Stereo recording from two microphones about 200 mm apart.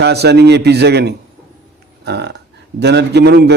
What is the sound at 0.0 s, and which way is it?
A man's voice, 55° right (ahead or behind).